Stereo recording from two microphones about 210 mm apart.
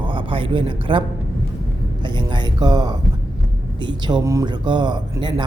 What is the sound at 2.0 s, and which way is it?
Speech, 20° right (ahead or behind).